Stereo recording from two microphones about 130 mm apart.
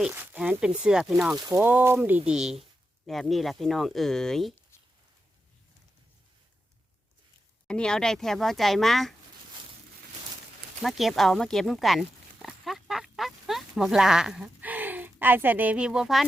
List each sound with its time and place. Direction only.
0.1 s speech: 15° right (ahead or behind)
1.4 s speech: 25° right (ahead or behind)
1.6 s speech: 15° right (ahead or behind); by 4.5 s 5° left (ahead or behind)
7.7 s speech: 5° left (ahead or behind)
10.8 s speech: centre (ahead or behind)